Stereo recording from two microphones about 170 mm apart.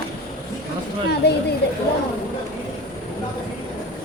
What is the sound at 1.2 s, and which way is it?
Speech, 75° left (ahead or behind).